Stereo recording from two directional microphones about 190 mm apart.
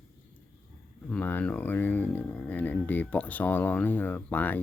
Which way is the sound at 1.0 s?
10° left (ahead or behind).